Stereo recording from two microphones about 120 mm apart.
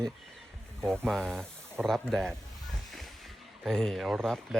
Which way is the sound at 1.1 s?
Centre (ahead or behind).